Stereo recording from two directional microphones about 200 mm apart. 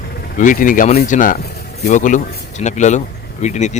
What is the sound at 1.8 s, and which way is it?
Speech, 40° left (ahead or behind).